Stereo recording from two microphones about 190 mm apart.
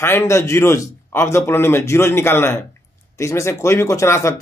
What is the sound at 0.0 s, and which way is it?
Speech, 15° left (ahead or behind).